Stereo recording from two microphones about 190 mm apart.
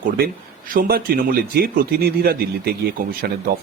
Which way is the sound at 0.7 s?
50° right (ahead or behind).